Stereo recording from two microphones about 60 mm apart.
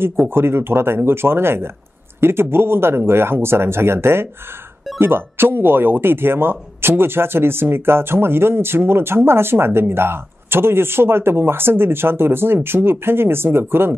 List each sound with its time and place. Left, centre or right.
0.3 s speech: right